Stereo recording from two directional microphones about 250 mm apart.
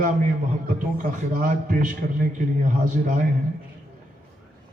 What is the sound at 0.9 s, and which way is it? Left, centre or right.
Speech, right.